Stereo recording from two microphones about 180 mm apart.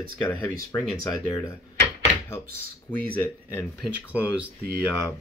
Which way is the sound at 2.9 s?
10° left (ahead or behind).